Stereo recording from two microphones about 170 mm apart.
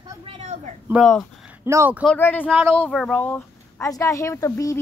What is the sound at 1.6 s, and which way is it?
Speech, 15° right (ahead or behind).